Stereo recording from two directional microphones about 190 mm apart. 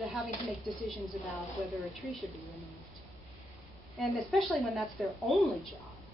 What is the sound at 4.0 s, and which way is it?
A woman's voice, centre (ahead or behind).